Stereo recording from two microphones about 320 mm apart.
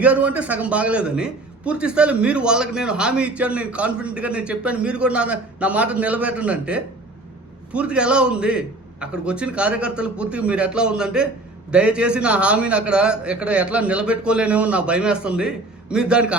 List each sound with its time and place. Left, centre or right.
0.0 s a man's voice: centre